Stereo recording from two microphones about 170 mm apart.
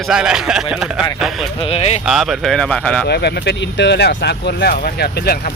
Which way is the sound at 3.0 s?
75° left (ahead or behind).